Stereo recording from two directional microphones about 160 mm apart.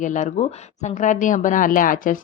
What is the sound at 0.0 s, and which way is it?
Speech, 50° left (ahead or behind).